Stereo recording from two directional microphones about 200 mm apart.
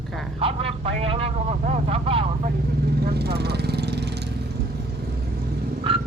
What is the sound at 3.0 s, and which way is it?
Speech, 55° right (ahead or behind).